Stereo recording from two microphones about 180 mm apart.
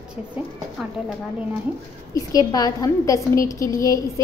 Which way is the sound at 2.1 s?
20° left (ahead or behind).